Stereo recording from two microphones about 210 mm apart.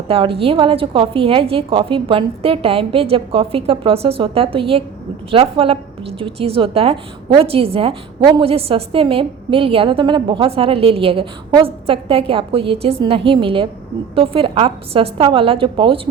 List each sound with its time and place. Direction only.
0.1 s a woman's voice: 25° right (ahead or behind)